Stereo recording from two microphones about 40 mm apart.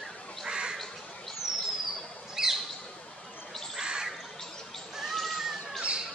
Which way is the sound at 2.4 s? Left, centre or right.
Centre.